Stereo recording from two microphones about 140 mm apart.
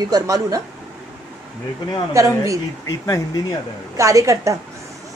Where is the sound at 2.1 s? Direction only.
20° right (ahead or behind).